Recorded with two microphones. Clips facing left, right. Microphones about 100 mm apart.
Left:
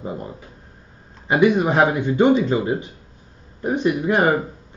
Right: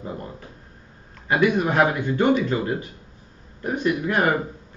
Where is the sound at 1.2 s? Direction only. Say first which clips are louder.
Left 4 dB; 20° left (ahead or behind).